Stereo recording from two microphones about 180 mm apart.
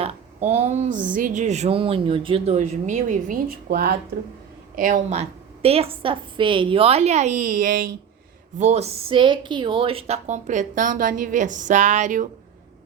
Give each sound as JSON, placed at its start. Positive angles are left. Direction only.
{"t": 0.0, "sound": "speech", "side_deg": -40}
{"t": 5.6, "sound": "speech", "side_deg": -35}
{"t": 8.5, "sound": "speech", "side_deg": -40}